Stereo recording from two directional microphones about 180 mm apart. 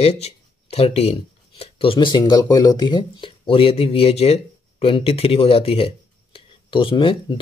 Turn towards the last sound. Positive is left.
turn(degrees=25)  # may be behind; listen again after turning